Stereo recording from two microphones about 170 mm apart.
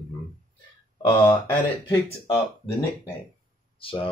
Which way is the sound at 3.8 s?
30° left (ahead or behind).